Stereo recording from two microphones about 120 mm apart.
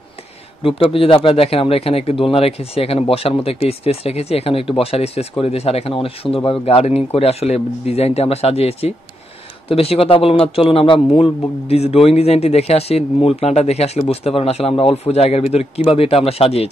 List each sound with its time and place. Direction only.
0.7 s speech: 50° left (ahead or behind)